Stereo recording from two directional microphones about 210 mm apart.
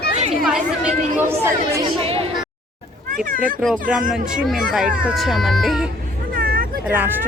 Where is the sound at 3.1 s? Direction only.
40° right (ahead or behind).